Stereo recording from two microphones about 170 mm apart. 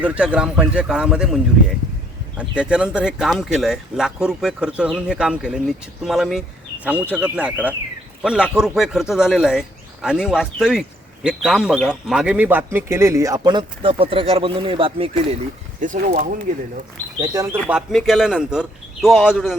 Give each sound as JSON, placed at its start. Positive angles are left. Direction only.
{"t": 0.0, "sound": "speech", "side_deg": -5}
{"t": 2.4, "sound": "speech", "side_deg": -5}
{"t": 15.8, "sound": "speech", "side_deg": -50}
{"t": 17.2, "sound": "speech", "side_deg": -20}
{"t": 17.7, "sound": "speech", "side_deg": 0}